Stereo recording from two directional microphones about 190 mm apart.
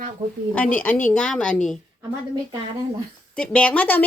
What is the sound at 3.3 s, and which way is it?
Speech, 5° left (ahead or behind).